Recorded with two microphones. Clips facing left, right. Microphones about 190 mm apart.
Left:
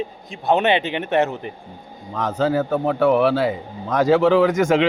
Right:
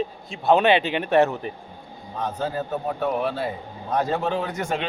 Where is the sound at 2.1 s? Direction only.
90° left.